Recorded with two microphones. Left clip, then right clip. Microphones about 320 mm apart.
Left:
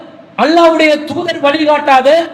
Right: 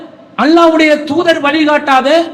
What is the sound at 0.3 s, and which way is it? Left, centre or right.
A man's voice, right.